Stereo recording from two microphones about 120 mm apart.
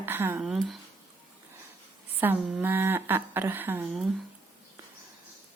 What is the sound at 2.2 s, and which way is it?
Speech, 15° right (ahead or behind).